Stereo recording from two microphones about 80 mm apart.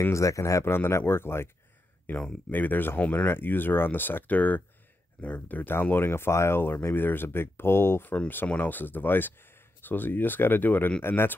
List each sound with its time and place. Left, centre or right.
0.1 s speech: left
2.5 s speech: left